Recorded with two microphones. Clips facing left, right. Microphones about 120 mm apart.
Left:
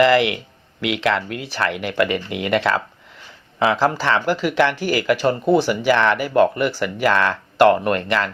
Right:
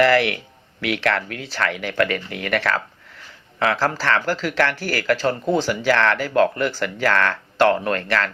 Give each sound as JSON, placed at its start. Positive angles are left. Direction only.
{"t": 0.0, "sound": "speech", "side_deg": 15}